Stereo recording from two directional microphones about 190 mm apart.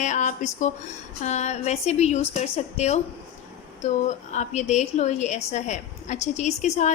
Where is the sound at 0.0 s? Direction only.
40° left (ahead or behind).